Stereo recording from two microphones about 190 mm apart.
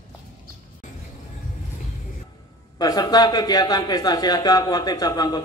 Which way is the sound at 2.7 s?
20° left (ahead or behind).